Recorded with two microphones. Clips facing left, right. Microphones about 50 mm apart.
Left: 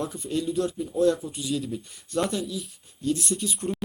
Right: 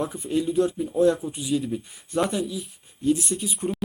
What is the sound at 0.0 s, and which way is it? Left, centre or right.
Speech, centre.